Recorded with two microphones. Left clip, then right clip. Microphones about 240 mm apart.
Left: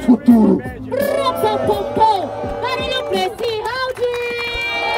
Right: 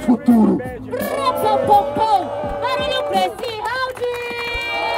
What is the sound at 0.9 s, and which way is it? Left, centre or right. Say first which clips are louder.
Music: left 3 dB; centre.